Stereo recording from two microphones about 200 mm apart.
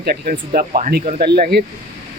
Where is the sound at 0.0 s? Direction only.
50° right (ahead or behind).